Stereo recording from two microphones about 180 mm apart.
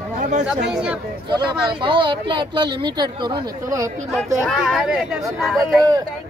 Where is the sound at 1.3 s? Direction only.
25° right (ahead or behind).